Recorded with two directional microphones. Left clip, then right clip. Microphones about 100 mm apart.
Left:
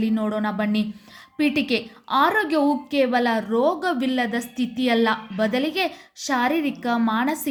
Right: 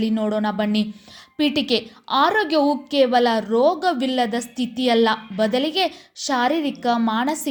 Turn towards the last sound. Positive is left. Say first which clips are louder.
# right 2 dB
turn(degrees=-20)  # may be behind; listen again after turning